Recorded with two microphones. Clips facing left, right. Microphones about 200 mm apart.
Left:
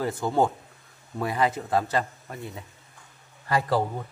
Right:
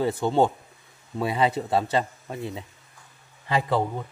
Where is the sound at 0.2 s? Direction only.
25° right (ahead or behind).